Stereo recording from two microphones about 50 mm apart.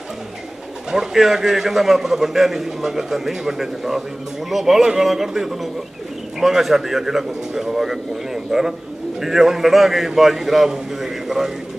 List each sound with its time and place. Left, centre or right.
0.9 s a man's voice: centre